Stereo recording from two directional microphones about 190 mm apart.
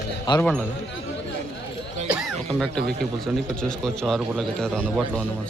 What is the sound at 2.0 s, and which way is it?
Music, centre (ahead or behind).